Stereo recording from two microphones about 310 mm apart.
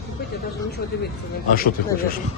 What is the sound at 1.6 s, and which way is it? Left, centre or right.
Speech, left.